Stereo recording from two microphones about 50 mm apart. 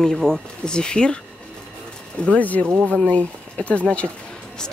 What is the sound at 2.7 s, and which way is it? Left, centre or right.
Speech, right.